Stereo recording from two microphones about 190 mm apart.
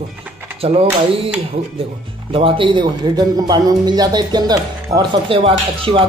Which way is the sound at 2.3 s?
25° right (ahead or behind).